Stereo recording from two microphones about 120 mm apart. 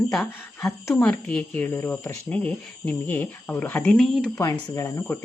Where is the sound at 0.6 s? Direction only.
20° left (ahead or behind).